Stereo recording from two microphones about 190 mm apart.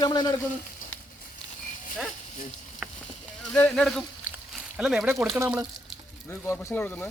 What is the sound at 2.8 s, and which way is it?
Rowboat, 5° right (ahead or behind).